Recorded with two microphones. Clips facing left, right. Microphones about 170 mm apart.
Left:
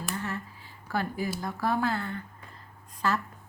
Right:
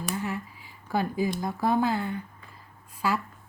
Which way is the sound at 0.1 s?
15° right (ahead or behind).